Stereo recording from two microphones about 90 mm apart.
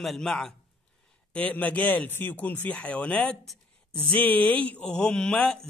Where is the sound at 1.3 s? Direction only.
15° left (ahead or behind).